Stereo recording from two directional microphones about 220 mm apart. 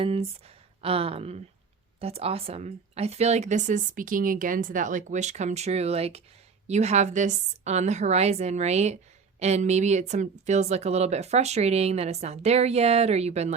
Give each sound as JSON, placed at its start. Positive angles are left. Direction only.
{"t": 0.0, "sound": "a woman's voice", "side_deg": -25}